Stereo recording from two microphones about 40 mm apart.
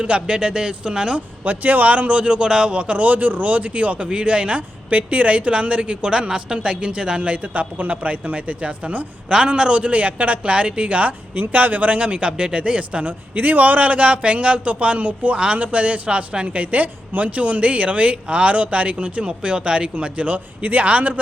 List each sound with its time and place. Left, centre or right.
0.0 s speech: right
1.5 s speech: right
4.9 s speech: right
7.2 s speech: right
9.3 s speech: right
11.3 s speech: right
13.1 s speech: right